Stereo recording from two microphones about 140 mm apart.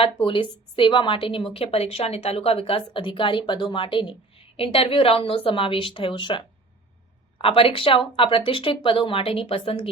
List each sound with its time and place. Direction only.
0.0 s a woman's voice: 40° left (ahead or behind)
7.4 s a woman's voice: 40° left (ahead or behind)